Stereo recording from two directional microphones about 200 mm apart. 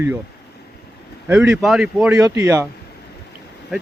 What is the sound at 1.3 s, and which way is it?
Speech, 5° right (ahead or behind).